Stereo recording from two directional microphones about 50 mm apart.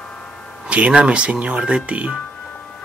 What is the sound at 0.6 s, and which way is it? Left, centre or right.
Speech, centre.